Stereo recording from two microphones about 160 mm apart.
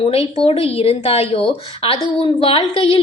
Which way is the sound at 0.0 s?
35° left (ahead or behind).